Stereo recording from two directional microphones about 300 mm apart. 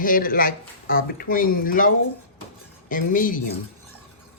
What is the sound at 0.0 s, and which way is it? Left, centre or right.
Speech, left.